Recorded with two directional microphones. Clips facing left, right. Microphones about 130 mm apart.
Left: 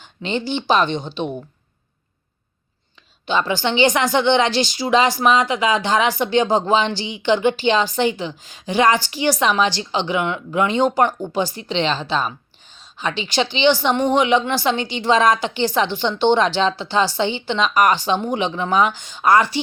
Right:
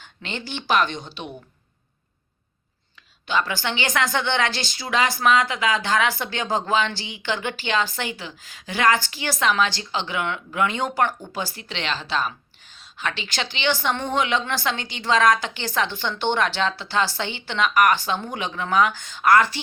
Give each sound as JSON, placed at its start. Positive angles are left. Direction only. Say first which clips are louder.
{"t": 0.0, "sound": "speech", "louder": "left 9 dB", "side_deg": 20}
{"t": 3.2, "sound": "speech", "louder": "left 5 dB", "side_deg": 20}